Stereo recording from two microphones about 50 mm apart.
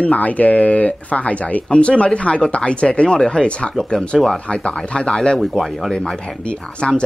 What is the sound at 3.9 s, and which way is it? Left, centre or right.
Speech, centre.